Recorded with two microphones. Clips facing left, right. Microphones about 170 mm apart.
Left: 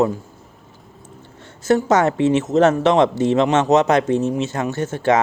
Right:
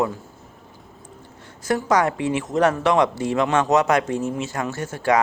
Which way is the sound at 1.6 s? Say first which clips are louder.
Left 4 dB; 25° left (ahead or behind).